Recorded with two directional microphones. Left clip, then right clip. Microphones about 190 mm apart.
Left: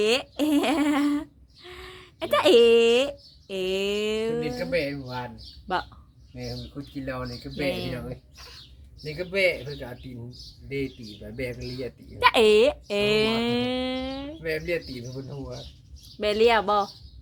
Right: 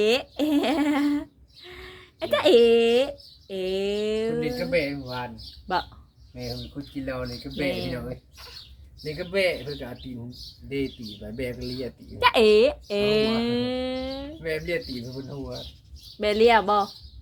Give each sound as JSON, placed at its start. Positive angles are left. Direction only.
{"t": 0.0, "sound": "a sound", "side_deg": 10}
{"t": 6.3, "sound": "speech", "side_deg": 10}
{"t": 16.1, "sound": "speech", "side_deg": 5}